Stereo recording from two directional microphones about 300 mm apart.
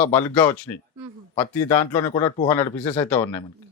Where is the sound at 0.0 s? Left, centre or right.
Centre.